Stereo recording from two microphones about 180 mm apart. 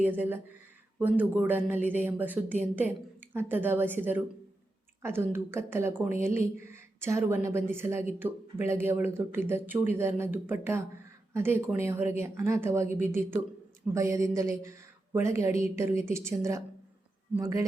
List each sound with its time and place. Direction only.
0.0 s a woman's voice: 10° right (ahead or behind)